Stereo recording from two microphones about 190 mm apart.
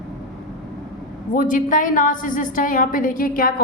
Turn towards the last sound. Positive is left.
turn(degrees=50)  # may be behind; listen again after turning